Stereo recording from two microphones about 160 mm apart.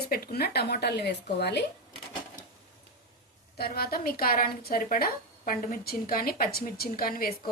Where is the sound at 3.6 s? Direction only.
75° left (ahead or behind).